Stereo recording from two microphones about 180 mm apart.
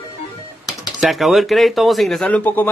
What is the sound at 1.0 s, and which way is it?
Speech, centre (ahead or behind).